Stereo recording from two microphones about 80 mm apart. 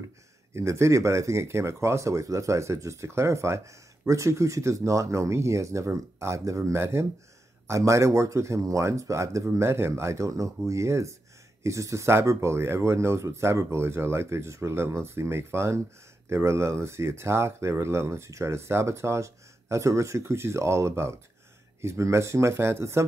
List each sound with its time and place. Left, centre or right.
0.6 s speech: right